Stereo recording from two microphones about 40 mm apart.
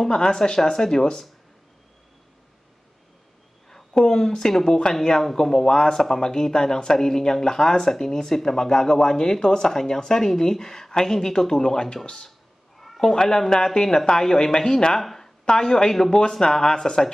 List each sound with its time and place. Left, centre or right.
0.0 s speech: centre
3.9 s speech: centre
12.7 s cat: centre
13.1 s speech: centre
15.0 s a sound: centre
15.4 s speech: centre